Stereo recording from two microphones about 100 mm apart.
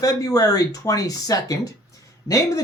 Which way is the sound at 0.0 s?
35° left (ahead or behind).